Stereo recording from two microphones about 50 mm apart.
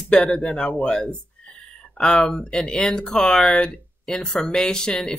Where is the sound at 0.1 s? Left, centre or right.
Centre.